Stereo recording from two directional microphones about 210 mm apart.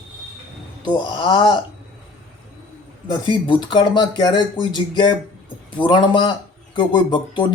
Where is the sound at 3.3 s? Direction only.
20° left (ahead or behind).